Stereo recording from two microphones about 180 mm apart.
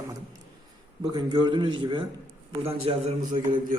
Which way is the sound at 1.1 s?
25° right (ahead or behind).